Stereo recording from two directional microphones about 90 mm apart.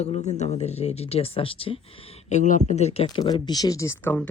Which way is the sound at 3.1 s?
50° left (ahead or behind).